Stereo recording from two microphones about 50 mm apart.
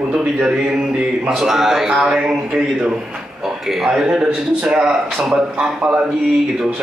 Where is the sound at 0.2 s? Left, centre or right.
Right.